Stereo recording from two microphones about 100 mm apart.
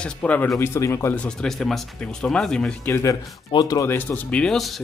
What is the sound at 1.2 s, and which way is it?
Speech, 5° left (ahead or behind).